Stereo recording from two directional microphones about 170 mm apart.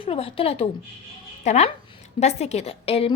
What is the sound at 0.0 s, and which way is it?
A woman's voice, 35° left (ahead or behind).